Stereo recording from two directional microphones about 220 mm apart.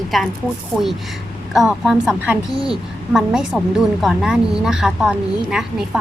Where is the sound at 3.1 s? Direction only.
5° right (ahead or behind).